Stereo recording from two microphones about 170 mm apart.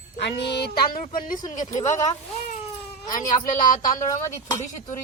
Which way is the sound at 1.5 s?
50° left (ahead or behind).